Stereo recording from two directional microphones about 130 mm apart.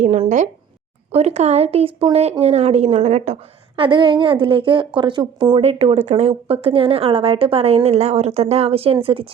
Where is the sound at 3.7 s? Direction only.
40° right (ahead or behind).